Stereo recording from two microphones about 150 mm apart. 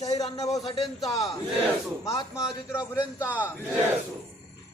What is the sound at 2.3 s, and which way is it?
Speech, 5° right (ahead or behind).